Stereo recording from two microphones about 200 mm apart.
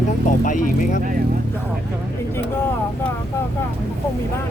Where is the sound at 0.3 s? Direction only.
40° left (ahead or behind).